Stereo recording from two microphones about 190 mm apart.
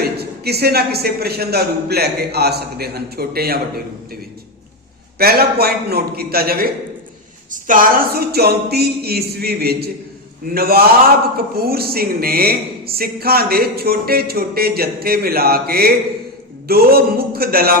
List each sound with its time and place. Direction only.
0.0 s a man's voice: 55° right (ahead or behind)
5.1 s a man's voice: 55° right (ahead or behind)